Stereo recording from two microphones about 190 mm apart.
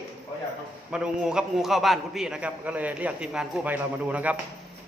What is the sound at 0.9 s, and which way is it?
A man's voice, 5° right (ahead or behind).